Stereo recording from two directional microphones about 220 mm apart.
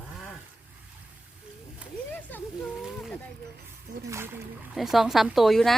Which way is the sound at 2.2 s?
5° left (ahead or behind).